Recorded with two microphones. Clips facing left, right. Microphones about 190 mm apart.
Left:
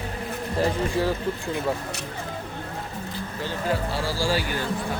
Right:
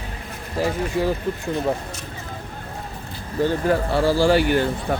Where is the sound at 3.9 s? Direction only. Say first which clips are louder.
Right 8 dB; 60° right (ahead or behind).